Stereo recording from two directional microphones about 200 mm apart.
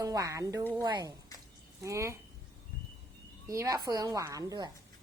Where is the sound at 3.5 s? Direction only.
15° right (ahead or behind).